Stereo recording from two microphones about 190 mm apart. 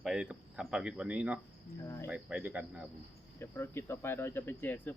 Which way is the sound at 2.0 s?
5° right (ahead or behind).